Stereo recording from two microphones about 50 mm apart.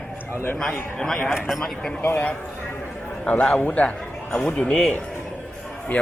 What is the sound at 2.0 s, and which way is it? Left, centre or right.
Speech, left.